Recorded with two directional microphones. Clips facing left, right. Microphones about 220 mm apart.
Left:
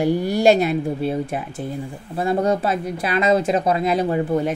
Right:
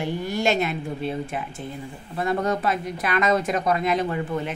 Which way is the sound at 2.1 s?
30° left (ahead or behind).